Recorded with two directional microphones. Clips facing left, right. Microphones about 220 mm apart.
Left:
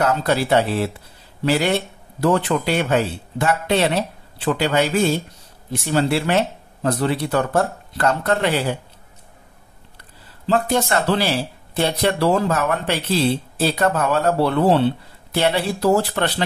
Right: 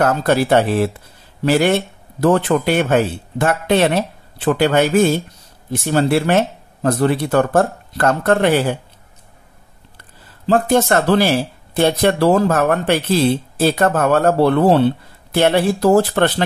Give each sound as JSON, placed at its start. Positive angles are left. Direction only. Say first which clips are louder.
{"t": 0.0, "sound": "speech", "louder": "right 4 dB", "side_deg": -50}
{"t": 10.5, "sound": "speech", "louder": "right 5 dB", "side_deg": -50}